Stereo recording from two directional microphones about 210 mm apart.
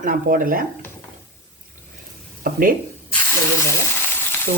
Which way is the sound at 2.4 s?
45° right (ahead or behind).